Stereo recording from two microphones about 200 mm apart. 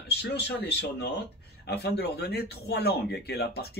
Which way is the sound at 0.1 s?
55° left (ahead or behind).